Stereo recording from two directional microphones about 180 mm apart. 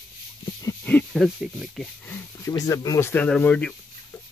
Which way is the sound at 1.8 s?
10° left (ahead or behind).